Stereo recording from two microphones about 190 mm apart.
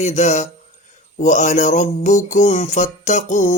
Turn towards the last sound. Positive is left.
turn(degrees=40)  # may be behind; listen again after turning